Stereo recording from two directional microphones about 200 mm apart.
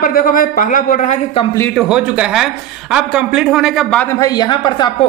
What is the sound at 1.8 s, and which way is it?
Speech, 5° right (ahead or behind).